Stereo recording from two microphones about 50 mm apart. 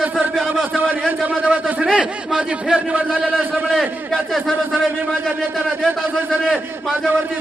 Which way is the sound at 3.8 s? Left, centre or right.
Centre.